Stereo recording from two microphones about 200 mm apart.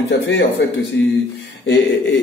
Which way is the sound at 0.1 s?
60° left (ahead or behind).